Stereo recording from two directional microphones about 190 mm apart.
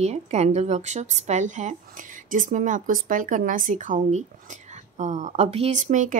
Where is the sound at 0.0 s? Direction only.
35° right (ahead or behind).